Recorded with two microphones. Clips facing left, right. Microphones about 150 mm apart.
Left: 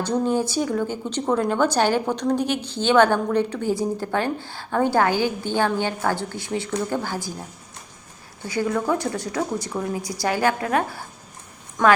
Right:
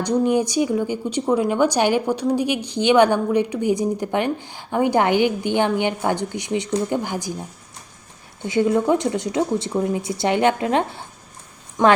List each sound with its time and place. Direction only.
0.0 s a woman's voice: 15° right (ahead or behind)
8.4 s speech: 20° right (ahead or behind)